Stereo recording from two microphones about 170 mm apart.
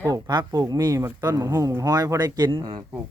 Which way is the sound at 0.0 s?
20° right (ahead or behind).